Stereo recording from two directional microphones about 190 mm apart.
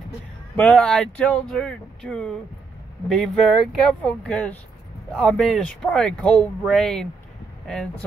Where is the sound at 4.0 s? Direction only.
5° left (ahead or behind).